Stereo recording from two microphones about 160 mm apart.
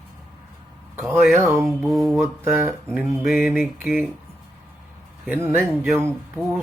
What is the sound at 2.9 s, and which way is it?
Mantra, centre (ahead or behind).